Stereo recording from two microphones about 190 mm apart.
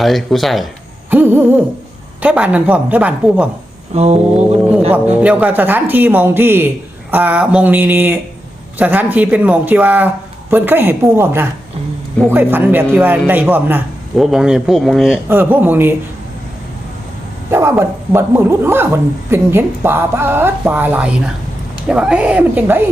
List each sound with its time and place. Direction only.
0.0 s a man's voice: centre (ahead or behind)
3.9 s a sound: 35° right (ahead or behind)
4.4 s music: 5° right (ahead or behind)
4.9 s a man's voice: 5° right (ahead or behind)
17.5 s a man's voice: 15° right (ahead or behind)